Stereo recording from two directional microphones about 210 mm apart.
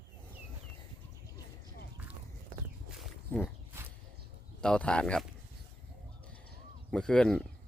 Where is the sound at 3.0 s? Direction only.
5° left (ahead or behind).